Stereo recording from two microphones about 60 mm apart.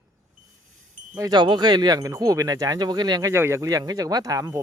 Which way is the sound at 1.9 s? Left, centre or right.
Right.